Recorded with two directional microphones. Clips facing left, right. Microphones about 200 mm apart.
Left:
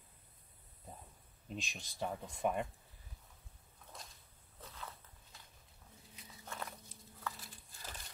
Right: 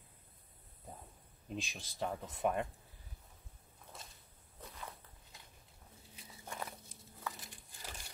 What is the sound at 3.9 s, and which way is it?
Walk, 5° right (ahead or behind).